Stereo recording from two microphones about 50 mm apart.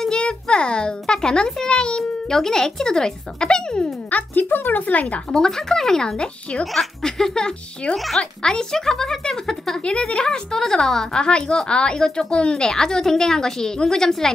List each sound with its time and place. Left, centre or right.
0.2 s speech: centre
4.1 s speech: left
5.3 s speech: centre
6.6 s speech: centre